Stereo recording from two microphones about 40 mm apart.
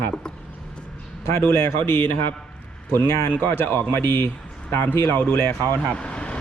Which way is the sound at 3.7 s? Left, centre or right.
Left.